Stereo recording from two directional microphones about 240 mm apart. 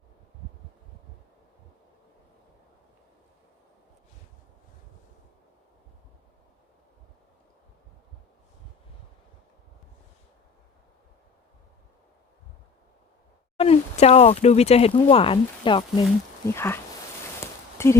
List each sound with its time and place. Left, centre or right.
13.6 s speech: left
16.5 s speech: centre
17.4 s a sound: centre